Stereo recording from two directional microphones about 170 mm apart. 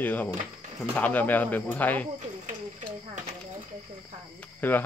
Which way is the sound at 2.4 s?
50° right (ahead or behind).